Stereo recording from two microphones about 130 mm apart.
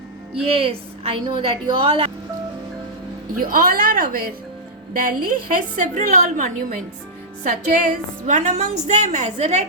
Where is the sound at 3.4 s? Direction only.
90° right.